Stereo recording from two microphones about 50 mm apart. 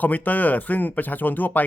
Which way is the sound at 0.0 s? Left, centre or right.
Left.